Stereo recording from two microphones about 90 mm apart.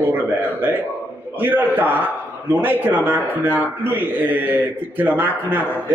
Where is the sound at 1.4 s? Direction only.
20° right (ahead or behind).